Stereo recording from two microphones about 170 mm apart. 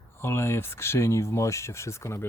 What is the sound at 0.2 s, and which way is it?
Speech, 15° left (ahead or behind).